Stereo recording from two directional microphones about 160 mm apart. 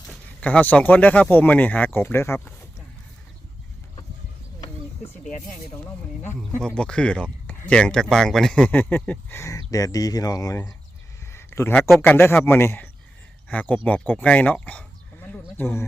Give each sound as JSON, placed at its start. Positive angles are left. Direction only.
{"t": 0.1, "sound": "speech", "side_deg": 10}
{"t": 6.7, "sound": "speech", "side_deg": 5}
{"t": 11.3, "sound": "a sound", "side_deg": 15}
{"t": 11.9, "sound": "speech", "side_deg": 15}
{"t": 14.1, "sound": "sheep", "side_deg": 10}
{"t": 15.5, "sound": "speech", "side_deg": 15}